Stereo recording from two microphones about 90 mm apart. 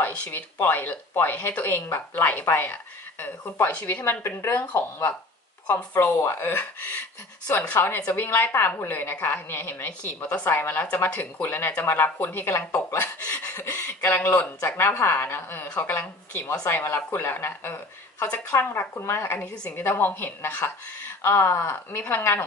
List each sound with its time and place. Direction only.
0.0 s a woman's voice: 20° left (ahead or behind)
19.4 s a woman's voice: 10° left (ahead or behind)
19.8 s a woman's voice: 25° left (ahead or behind)